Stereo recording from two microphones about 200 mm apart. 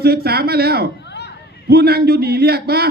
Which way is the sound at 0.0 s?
50° right (ahead or behind).